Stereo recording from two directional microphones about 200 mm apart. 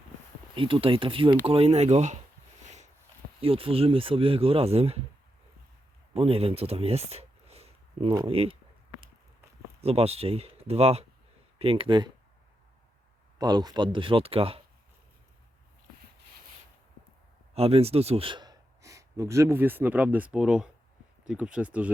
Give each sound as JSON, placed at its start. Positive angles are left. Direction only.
{"t": 0.5, "sound": "speech", "side_deg": -25}
{"t": 2.6, "sound": "a sound", "side_deg": -35}
{"t": 3.4, "sound": "speech", "side_deg": -30}
{"t": 6.1, "sound": "speech", "side_deg": -30}
{"t": 9.8, "sound": "speech", "side_deg": -30}
{"t": 13.4, "sound": "speech", "side_deg": -20}
{"t": 17.5, "sound": "speech", "side_deg": -30}